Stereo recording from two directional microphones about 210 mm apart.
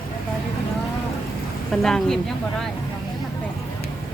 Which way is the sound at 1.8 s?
Centre (ahead or behind).